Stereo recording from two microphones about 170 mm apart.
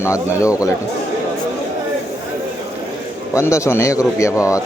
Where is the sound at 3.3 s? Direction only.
15° left (ahead or behind).